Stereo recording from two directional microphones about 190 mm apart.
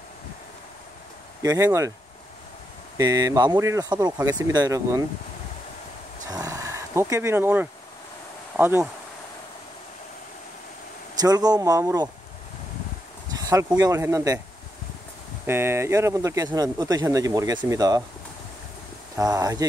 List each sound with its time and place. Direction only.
1.4 s speech: 20° right (ahead or behind)
3.0 s speech: 20° right (ahead or behind)
6.3 s vehicle: 20° right (ahead or behind)
8.5 s speech: 10° right (ahead or behind)
11.1 s speech: 20° right (ahead or behind)
13.3 s a sound: 20° right (ahead or behind)
13.7 s speech: 15° right (ahead or behind)
15.4 s speech: 10° right (ahead or behind)
19.1 s speech: 20° right (ahead or behind)